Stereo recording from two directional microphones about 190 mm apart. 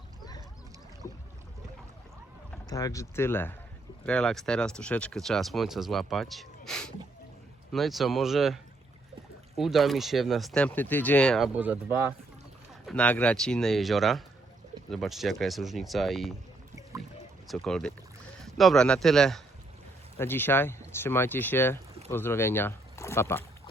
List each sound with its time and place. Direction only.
1.0 s boat: 15° left (ahead or behind)
2.6 s speech: 20° left (ahead or behind); by 8.5 s centre (ahead or behind)
9.6 s speech: centre (ahead or behind)
12.8 s speech: 5° left (ahead or behind)
17.5 s speech: centre (ahead or behind)